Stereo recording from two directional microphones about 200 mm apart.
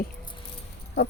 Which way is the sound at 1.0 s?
55° left (ahead or behind).